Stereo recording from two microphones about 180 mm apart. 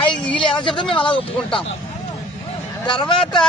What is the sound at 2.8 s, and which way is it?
Speech, 25° left (ahead or behind).